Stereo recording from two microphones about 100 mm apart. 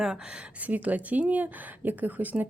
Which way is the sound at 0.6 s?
15° right (ahead or behind).